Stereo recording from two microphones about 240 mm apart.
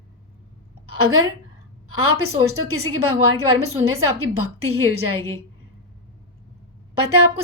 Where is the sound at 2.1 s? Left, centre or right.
Right.